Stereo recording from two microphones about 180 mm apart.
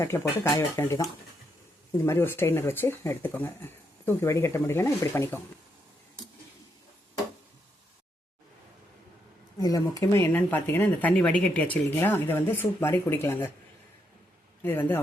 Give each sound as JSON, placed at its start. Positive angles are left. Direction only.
{"t": 0.0, "sound": "speech", "side_deg": 15}
{"t": 2.0, "sound": "speech", "side_deg": 15}
{"t": 9.6, "sound": "speech", "side_deg": 20}
{"t": 14.6, "sound": "speech", "side_deg": 10}